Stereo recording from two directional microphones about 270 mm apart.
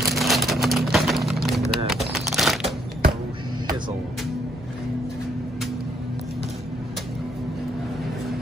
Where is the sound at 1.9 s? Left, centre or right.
Centre.